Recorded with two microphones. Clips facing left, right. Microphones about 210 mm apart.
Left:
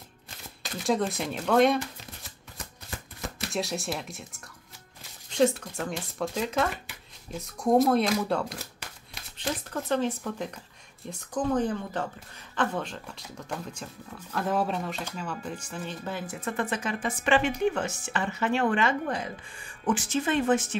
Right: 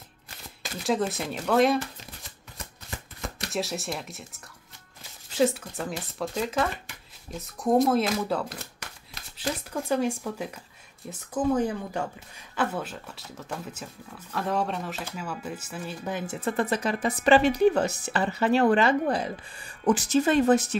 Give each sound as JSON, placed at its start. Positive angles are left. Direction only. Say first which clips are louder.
{"t": 0.8, "sound": "speech", "louder": "even", "side_deg": 0}
{"t": 3.2, "sound": "speech", "louder": "right 1 dB", "side_deg": 0}
{"t": 16.3, "sound": "a woman's voice", "louder": "right 5 dB", "side_deg": -35}